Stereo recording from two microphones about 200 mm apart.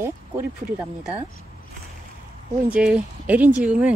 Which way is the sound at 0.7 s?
10° right (ahead or behind).